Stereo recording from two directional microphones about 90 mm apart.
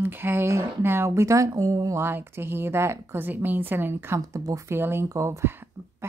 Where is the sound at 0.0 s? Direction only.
25° right (ahead or behind).